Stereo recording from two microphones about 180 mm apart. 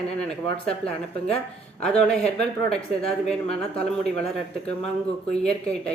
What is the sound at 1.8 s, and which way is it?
Speech, 5° left (ahead or behind).